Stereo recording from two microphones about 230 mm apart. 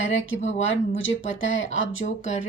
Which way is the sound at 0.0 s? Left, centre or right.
Left.